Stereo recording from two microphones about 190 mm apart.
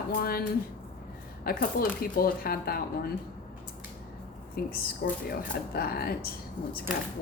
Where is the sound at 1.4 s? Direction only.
50° left (ahead or behind).